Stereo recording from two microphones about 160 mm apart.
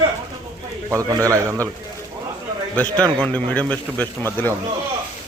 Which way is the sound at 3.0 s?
10° left (ahead or behind).